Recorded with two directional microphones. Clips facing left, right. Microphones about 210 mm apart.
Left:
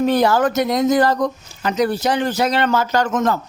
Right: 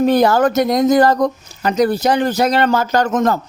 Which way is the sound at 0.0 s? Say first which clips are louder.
Right 3 dB; 45° right (ahead or behind).